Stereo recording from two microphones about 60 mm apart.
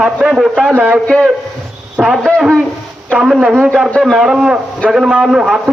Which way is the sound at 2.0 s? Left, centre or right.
Centre.